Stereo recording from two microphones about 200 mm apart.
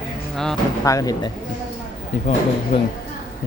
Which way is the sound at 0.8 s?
15° left (ahead or behind).